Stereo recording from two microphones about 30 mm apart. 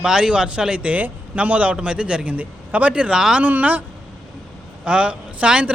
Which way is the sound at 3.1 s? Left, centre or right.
Right.